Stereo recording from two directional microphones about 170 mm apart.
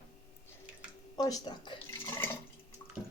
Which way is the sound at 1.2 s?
25° left (ahead or behind).